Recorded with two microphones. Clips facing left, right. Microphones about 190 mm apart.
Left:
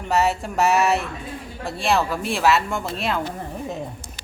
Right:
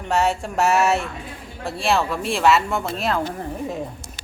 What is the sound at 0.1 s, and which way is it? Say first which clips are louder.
Speech: even; centre (ahead or behind).